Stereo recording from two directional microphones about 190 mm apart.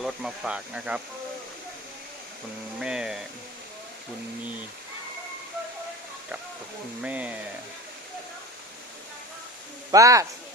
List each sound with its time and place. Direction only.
0.0 s speech: centre (ahead or behind)
2.7 s speech: 5° right (ahead or behind)
7.0 s speech: 5° right (ahead or behind)
9.9 s speech: 15° right (ahead or behind)